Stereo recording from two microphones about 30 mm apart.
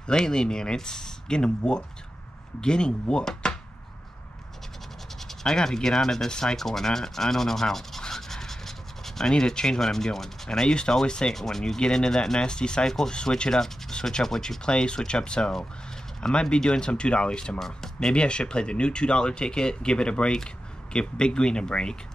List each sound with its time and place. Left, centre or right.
0.0 s speech: left
1.6 s speech: left
5.4 s rub: centre
8.1 s scratch: centre
9.3 s rub: left
10.7 s speech: left
11.3 s rub: centre
11.8 s speech: left
14.2 s rub: centre
14.6 s speech: left
17.6 s speech: centre
18.1 s speech: left